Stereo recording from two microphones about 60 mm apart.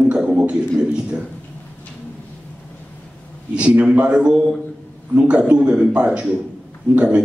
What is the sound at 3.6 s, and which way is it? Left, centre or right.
A man's voice, centre.